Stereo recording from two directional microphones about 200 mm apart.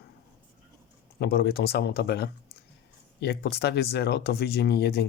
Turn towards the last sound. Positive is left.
turn(degrees=55)  # may be behind; listen again after turning